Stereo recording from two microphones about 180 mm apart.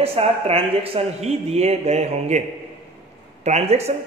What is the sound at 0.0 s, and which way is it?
Speech, 30° right (ahead or behind).